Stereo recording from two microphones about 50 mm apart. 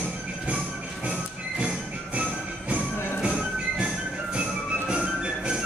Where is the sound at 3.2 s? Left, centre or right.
Centre.